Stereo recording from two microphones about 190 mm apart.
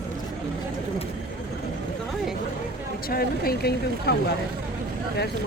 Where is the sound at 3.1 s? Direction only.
50° left (ahead or behind).